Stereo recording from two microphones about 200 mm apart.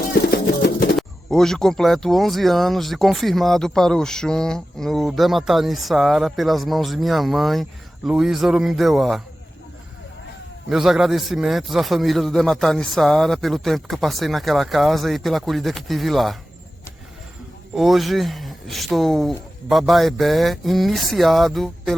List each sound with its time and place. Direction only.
0.1 s music: 50° left (ahead or behind)
0.9 s speech: centre (ahead or behind)
10.7 s speech: 5° right (ahead or behind)
17.7 s speech: centre (ahead or behind)